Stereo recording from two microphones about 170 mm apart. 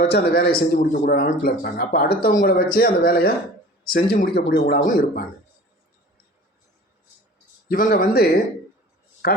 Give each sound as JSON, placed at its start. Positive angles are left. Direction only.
{"t": 0.1, "sound": "speech", "side_deg": 60}
{"t": 4.8, "sound": "speech", "side_deg": 50}
{"t": 7.7, "sound": "speech", "side_deg": 55}